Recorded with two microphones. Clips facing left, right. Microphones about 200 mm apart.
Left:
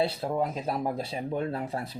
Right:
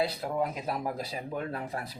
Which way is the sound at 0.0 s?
25° left (ahead or behind).